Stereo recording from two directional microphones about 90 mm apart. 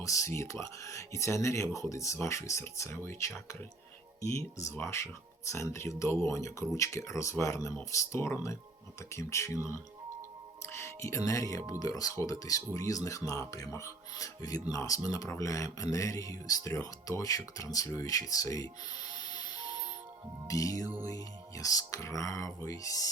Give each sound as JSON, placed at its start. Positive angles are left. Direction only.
{"t": 0.0, "sound": "speech", "side_deg": 35}
{"t": 10.8, "sound": "speech", "side_deg": 30}
{"t": 20.5, "sound": "speech", "side_deg": 40}